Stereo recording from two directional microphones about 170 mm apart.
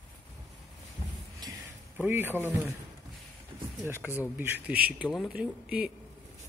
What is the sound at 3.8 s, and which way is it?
Speech, 10° right (ahead or behind).